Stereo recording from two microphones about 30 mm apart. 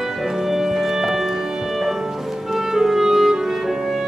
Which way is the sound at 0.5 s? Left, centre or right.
Centre.